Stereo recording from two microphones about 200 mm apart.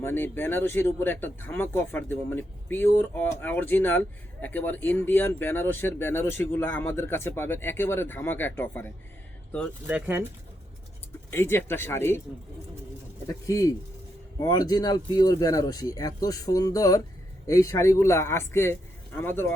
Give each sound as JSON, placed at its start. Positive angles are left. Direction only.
{"t": 0.0, "sound": "speech", "side_deg": 10}
{"t": 9.8, "sound": "speech", "side_deg": -10}
{"t": 11.3, "sound": "speech", "side_deg": 10}
{"t": 13.2, "sound": "speech", "side_deg": 15}